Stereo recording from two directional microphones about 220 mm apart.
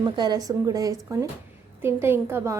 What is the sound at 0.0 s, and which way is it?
A woman's voice, 20° right (ahead or behind).